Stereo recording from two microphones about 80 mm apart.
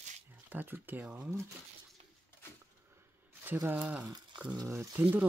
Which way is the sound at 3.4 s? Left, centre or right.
Right.